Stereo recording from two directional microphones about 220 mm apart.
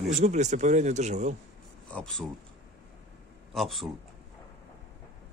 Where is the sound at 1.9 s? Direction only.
Centre (ahead or behind).